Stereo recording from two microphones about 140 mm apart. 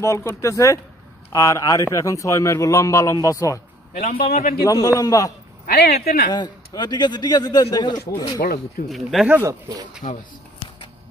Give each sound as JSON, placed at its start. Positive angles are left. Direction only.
{"t": 0.0, "sound": "a man's voice", "side_deg": 20}
{"t": 3.9, "sound": "a man's voice", "side_deg": 75}
{"t": 4.6, "sound": "a man's voice", "side_deg": 20}
{"t": 5.7, "sound": "speech", "side_deg": 90}
{"t": 6.3, "sound": "a man's voice", "side_deg": 30}
{"t": 8.4, "sound": "speech", "side_deg": 90}
{"t": 8.8, "sound": "speech", "side_deg": 0}
{"t": 9.3, "sound": "speech", "side_deg": -20}